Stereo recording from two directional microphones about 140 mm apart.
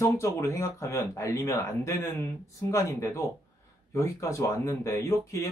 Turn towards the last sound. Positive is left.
turn(degrees=20)  # may be behind; listen again after turning